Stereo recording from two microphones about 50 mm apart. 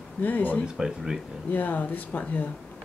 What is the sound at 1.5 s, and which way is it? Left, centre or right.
Speech, left.